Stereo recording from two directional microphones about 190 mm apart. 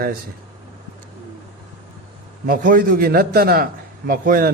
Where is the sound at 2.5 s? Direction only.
50° right (ahead or behind).